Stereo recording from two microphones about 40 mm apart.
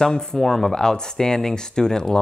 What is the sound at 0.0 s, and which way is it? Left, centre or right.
Speech, centre.